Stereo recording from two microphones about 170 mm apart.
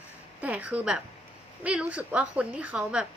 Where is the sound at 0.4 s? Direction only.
10° right (ahead or behind).